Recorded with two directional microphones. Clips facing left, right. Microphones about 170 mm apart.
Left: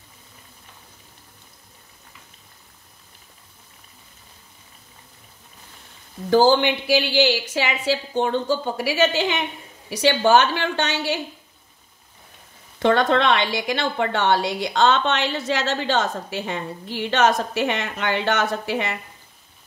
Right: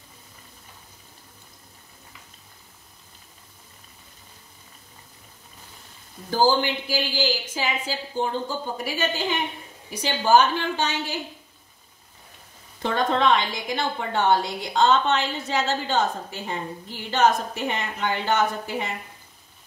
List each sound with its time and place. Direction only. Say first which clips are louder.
6.3 s a woman's voice: left 5 dB; 75° left (ahead or behind)
12.7 s a woman's voice: left 6 dB; 75° left (ahead or behind)